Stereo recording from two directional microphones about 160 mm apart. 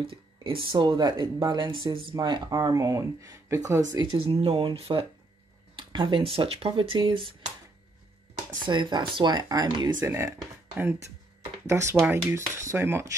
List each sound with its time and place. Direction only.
0.0 s speech: 35° right (ahead or behind); by 3.8 s 15° right (ahead or behind)
3.9 s speech: 30° right (ahead or behind)
8.6 s speech: 30° right (ahead or behind)
11.6 s speech: 15° right (ahead or behind)